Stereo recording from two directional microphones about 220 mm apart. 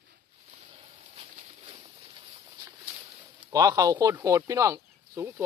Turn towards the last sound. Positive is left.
turn(degrees=-15)  # may be behind; listen again after turning